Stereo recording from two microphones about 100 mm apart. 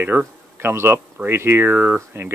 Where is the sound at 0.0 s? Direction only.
20° right (ahead or behind).